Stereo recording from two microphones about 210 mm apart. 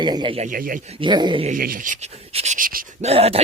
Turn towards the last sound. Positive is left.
turn(degrees=-30)  # may be behind; listen again after turning